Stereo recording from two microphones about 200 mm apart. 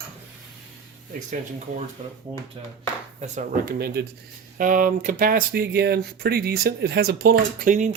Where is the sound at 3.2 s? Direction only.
40° right (ahead or behind).